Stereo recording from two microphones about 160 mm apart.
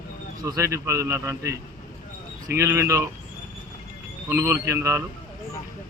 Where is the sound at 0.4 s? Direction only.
20° right (ahead or behind).